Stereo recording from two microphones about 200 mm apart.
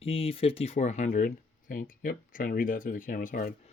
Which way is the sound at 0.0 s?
30° left (ahead or behind).